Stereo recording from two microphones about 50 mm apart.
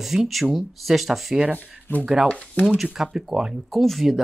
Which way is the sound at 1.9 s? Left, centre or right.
Left.